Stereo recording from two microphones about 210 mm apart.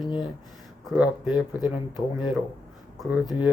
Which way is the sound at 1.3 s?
20° left (ahead or behind).